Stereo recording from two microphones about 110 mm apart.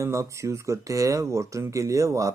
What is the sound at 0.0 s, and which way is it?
Speech, 30° right (ahead or behind).